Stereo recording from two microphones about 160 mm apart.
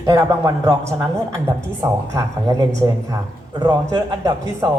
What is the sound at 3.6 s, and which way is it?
Speech, 20° right (ahead or behind).